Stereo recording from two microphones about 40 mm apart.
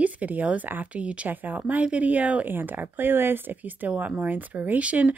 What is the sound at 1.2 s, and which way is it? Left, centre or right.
Speech, right.